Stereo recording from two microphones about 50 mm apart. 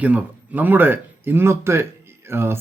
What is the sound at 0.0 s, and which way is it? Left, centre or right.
Speech, right.